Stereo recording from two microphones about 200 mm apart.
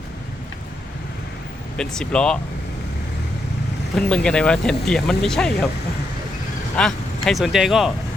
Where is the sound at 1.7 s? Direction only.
5° left (ahead or behind).